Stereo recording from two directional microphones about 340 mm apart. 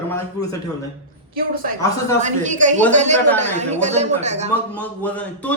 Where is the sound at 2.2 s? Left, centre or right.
Right.